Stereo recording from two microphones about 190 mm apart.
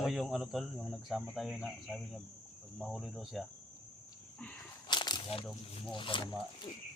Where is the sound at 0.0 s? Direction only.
Centre (ahead or behind).